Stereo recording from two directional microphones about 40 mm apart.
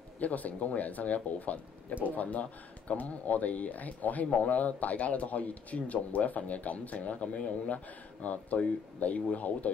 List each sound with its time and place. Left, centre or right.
0.2 s speech: left